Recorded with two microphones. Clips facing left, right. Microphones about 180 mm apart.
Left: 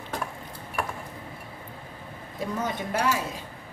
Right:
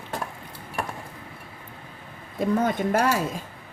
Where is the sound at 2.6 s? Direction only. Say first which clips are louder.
Right 3 dB; 50° right (ahead or behind).